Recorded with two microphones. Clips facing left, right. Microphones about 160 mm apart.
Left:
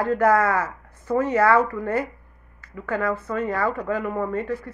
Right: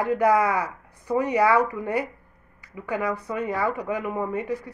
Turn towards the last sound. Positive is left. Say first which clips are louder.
# left 1 dB
turn(degrees=-15)  # may be behind; listen again after turning